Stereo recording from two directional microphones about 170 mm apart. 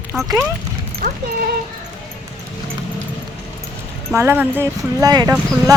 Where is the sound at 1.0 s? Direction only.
55° right (ahead or behind).